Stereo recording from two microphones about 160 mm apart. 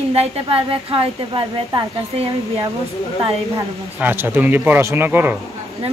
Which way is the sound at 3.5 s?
15° right (ahead or behind).